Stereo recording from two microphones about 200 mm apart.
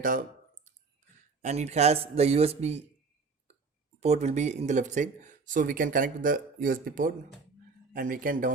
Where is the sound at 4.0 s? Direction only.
35° right (ahead or behind).